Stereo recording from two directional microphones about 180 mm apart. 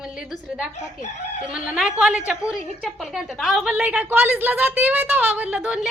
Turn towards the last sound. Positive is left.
turn(degrees=-5)  # may be behind; listen again after turning